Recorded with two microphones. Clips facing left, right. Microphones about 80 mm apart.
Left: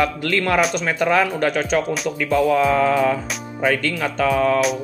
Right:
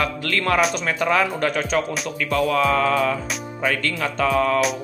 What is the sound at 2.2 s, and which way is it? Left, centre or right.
Speech, centre.